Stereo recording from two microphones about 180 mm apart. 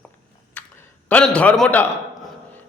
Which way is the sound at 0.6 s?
10° left (ahead or behind).